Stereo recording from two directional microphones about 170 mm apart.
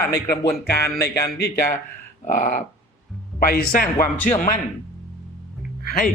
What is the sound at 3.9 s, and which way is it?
Speech, 15° left (ahead or behind).